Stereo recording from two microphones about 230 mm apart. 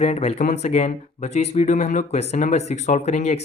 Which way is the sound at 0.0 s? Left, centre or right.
Left.